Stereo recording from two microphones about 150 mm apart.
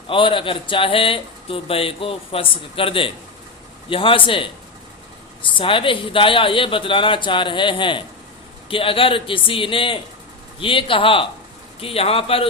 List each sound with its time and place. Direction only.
0.1 s speech: 35° left (ahead or behind)